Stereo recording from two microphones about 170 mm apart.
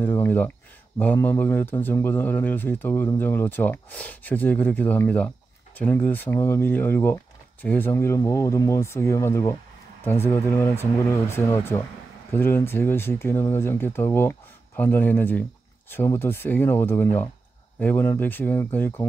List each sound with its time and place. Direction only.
0.0 s a man's voice: 15° left (ahead or behind)